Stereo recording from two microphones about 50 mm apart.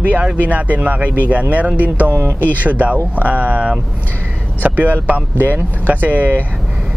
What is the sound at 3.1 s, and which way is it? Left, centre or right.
Speech, right.